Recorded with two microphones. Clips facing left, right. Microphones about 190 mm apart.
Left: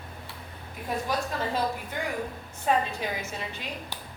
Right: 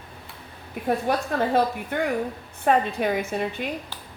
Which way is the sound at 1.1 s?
60° right (ahead or behind).